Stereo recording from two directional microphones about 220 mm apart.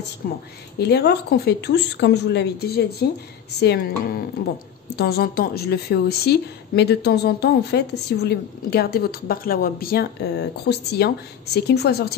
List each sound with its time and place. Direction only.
0.2 s a woman's voice: 40° left (ahead or behind)